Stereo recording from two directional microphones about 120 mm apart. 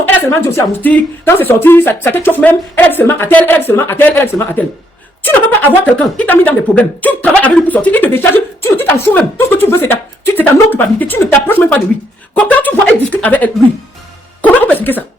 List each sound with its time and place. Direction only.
0.3 s speech: 15° left (ahead or behind)